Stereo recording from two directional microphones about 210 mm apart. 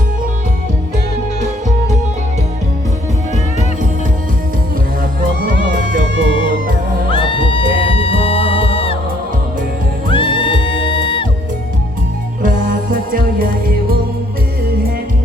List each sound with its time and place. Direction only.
6.2 s music: 25° left (ahead or behind)
10.1 s music: 25° left (ahead or behind)
12.4 s music: 40° right (ahead or behind)